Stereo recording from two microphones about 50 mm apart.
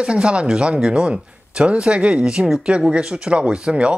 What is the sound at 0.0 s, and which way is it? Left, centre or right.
Speech, centre.